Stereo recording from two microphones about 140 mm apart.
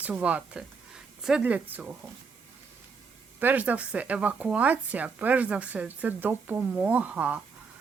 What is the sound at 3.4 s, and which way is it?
A woman's voice, 15° right (ahead or behind).